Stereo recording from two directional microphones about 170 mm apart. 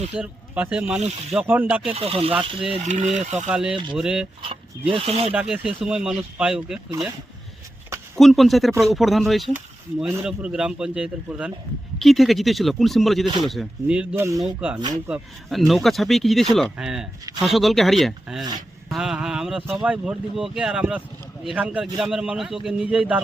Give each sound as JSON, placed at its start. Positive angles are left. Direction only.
{"t": 0.2, "sound": "speech", "side_deg": -5}
{"t": 2.0, "sound": "speech", "side_deg": -35}
{"t": 3.5, "sound": "speech", "side_deg": -5}
{"t": 4.4, "sound": "speech", "side_deg": -30}
{"t": 5.3, "sound": "speech", "side_deg": -5}
{"t": 8.1, "sound": "speech", "side_deg": 0}
{"t": 13.2, "sound": "speech", "side_deg": -25}
{"t": 13.5, "sound": "speech", "side_deg": -5}
{"t": 14.4, "sound": "speech", "side_deg": -5}